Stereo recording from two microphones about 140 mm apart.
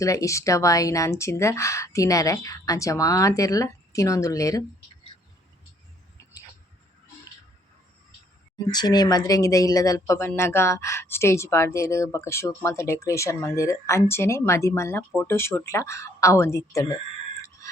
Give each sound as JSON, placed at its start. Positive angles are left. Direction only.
{"t": 0.0, "sound": "speech", "side_deg": 25}
{"t": 5.1, "sound": "bird", "side_deg": 35}
{"t": 8.5, "sound": "speech", "side_deg": 30}